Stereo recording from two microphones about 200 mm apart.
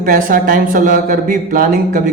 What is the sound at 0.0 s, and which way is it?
Speech, 45° right (ahead or behind).